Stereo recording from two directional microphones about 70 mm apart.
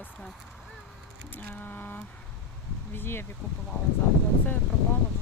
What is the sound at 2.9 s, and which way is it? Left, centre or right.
Speech, left.